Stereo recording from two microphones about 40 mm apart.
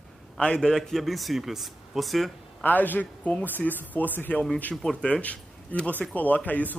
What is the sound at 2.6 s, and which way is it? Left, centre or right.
A man's voice, left.